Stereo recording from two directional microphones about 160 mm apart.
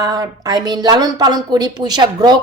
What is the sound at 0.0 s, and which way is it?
A woman's voice, 20° right (ahead or behind).